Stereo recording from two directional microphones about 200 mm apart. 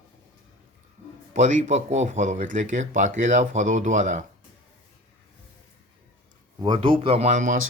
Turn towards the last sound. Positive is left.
turn(degrees=-40)  # may be behind; listen again after turning